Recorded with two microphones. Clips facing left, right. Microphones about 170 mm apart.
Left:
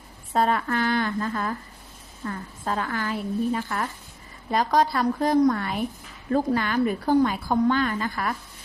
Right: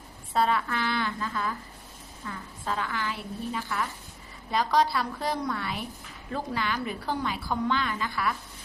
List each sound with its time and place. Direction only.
0.3 s a woman's voice: 45° left (ahead or behind)